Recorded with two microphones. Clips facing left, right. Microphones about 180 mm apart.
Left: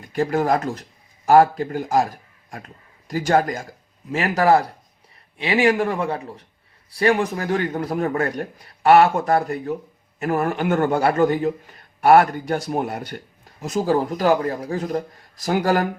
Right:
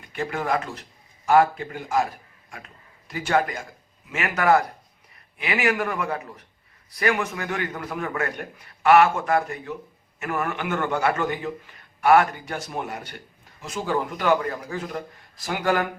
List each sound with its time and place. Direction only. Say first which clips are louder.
0.0 s a man's voice: left 8 dB; 40° left (ahead or behind)